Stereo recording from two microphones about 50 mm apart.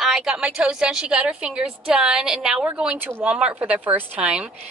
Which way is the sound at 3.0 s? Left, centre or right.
Right.